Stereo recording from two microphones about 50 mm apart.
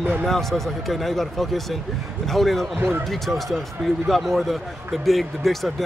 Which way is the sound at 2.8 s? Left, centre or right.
Right.